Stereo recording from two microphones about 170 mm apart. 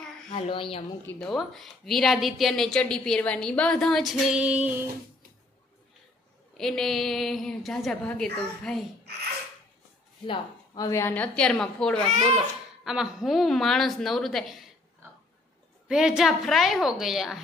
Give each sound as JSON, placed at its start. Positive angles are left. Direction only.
{"t": 0.3, "sound": "speech", "side_deg": 35}
{"t": 1.0, "sound": "a woman's voice", "side_deg": 5}
{"t": 6.5, "sound": "a woman's voice", "side_deg": 0}
{"t": 10.2, "sound": "speech", "side_deg": 30}
{"t": 10.9, "sound": "a woman's voice", "side_deg": 15}
{"t": 15.9, "sound": "a woman's voice", "side_deg": -5}